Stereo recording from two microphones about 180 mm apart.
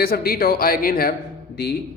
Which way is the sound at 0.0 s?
60° left (ahead or behind).